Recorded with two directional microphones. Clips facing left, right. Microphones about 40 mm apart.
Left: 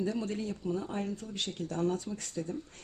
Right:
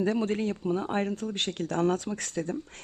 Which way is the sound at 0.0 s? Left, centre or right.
Right.